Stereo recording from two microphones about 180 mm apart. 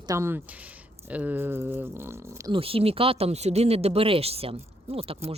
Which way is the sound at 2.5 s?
30° right (ahead or behind).